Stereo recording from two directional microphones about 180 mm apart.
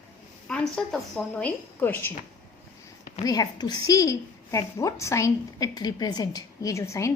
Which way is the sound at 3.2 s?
20° left (ahead or behind).